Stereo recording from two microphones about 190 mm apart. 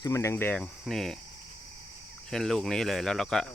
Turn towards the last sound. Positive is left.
turn(degrees=0)  # may be behind; listen again after turning